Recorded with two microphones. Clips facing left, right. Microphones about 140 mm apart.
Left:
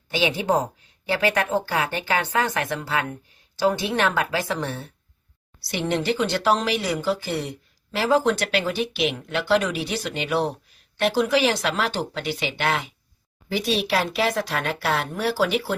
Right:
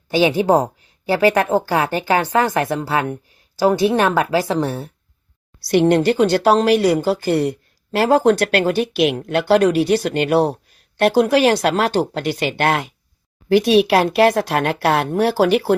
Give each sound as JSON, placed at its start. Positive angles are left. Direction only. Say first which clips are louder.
{"t": 0.1, "sound": "a woman's voice", "louder": "right 7 dB", "side_deg": -35}
{"t": 5.8, "sound": "speech", "louder": "right 7 dB", "side_deg": -50}
{"t": 7.2, "sound": "speech", "louder": "right 10 dB", "side_deg": -55}
{"t": 9.6, "sound": "a woman's voice", "louder": "right 12 dB", "side_deg": -40}
{"t": 9.9, "sound": "speech", "louder": "right 9 dB", "side_deg": -60}